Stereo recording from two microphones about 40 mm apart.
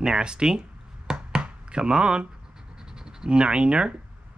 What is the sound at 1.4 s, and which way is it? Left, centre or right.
Speech, right.